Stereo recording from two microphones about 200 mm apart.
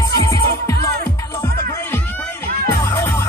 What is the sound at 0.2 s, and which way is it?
Music, 15° left (ahead or behind).